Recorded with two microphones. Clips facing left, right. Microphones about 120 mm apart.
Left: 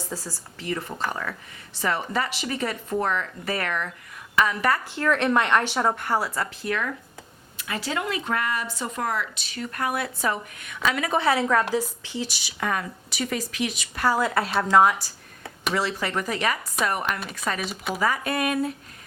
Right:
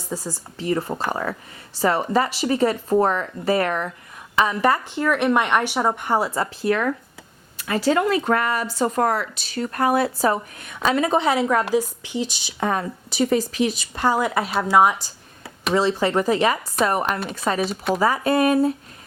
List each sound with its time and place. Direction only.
0.1 s a woman's voice: 10° right (ahead or behind)
0.6 s speech: 35° right (ahead or behind)
4.9 s a woman's voice: 10° right (ahead or behind)
15.7 s speech: 30° right (ahead or behind)